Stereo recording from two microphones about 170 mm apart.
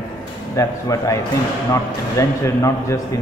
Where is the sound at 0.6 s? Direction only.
20° left (ahead or behind).